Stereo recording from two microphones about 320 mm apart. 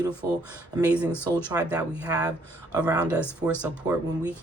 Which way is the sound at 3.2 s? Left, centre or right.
Centre.